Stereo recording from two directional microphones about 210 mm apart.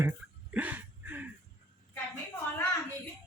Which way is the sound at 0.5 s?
10° right (ahead or behind).